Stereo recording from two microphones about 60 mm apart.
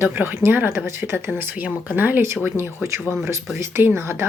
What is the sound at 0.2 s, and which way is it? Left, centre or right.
Speech, right.